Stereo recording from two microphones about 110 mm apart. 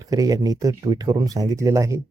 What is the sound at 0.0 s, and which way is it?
Speech, 35° right (ahead or behind).